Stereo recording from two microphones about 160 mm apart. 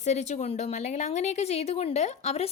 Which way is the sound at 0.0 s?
45° left (ahead or behind).